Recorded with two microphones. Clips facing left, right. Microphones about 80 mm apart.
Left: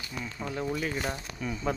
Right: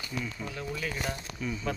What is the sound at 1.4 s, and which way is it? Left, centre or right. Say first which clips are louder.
Speech: even; left.